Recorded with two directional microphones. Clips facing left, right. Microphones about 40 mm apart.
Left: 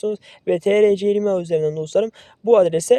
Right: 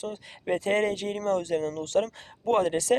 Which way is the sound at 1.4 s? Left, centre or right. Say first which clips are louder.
Left 8 dB; left.